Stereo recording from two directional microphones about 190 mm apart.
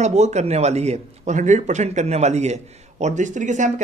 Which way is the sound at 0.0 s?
35° right (ahead or behind).